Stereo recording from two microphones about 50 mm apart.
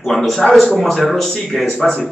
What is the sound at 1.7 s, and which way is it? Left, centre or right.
Speech, centre.